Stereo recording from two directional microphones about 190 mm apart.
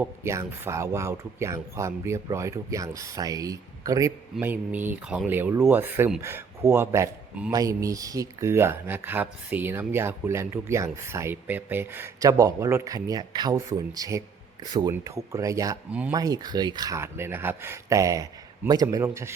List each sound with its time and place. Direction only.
0.0 s speech: 15° right (ahead or behind)
15.9 s speech: 5° right (ahead or behind)
16.1 s speech: 20° right (ahead or behind)